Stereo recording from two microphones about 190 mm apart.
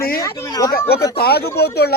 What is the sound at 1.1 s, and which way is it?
Speech, 55° left (ahead or behind).